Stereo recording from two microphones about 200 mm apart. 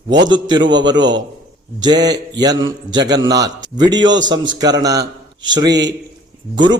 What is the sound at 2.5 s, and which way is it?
Speech, 70° right (ahead or behind).